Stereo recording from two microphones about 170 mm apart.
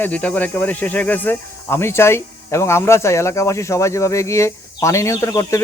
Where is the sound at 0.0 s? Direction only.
10° left (ahead or behind).